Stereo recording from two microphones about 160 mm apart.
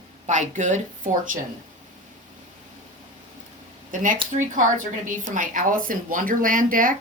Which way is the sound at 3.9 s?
55° right (ahead or behind).